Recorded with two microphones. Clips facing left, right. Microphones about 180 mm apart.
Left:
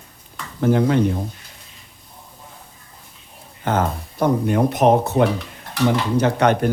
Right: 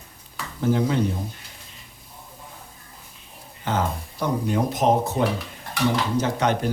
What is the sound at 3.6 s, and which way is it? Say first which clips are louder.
Speech: left 4 dB; 55° left (ahead or behind).